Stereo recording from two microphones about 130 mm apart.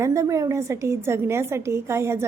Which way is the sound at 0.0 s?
20° right (ahead or behind).